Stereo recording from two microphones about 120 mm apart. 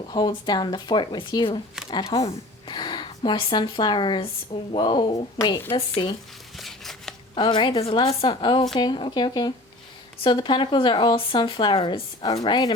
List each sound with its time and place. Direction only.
0.1 s a woman's voice: 35° left (ahead or behind)
6.6 s chopping: centre (ahead or behind)
7.3 s speech: 40° left (ahead or behind)
8.3 s speech: 40° left (ahead or behind)